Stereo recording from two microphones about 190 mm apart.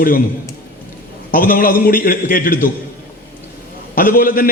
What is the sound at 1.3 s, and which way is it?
A man's voice, 45° left (ahead or behind).